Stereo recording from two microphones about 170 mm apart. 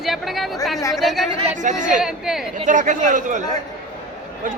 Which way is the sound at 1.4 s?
40° right (ahead or behind).